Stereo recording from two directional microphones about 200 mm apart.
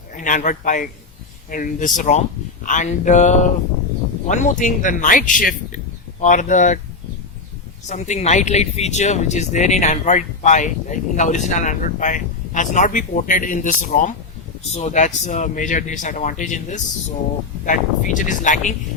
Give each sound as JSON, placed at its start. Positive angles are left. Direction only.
{"t": 0.2, "sound": "speech", "side_deg": 40}
{"t": 7.9, "sound": "speech", "side_deg": 35}